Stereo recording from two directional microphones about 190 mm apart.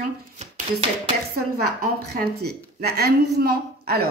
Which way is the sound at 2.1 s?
60° right (ahead or behind).